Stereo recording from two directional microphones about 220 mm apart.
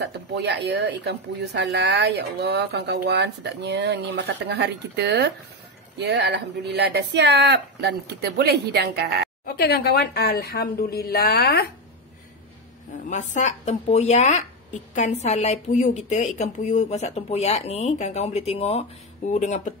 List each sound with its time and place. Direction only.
0.0 s speech: 50° right (ahead or behind)
9.6 s a woman's voice: 45° left (ahead or behind)
13.1 s speech: 35° left (ahead or behind)